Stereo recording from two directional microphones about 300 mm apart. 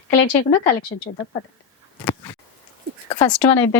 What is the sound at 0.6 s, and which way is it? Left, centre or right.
Speech, left.